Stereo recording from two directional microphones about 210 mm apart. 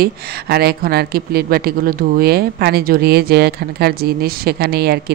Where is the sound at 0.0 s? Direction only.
50° right (ahead or behind).